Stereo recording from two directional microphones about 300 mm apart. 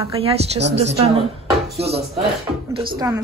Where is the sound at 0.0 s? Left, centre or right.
Centre.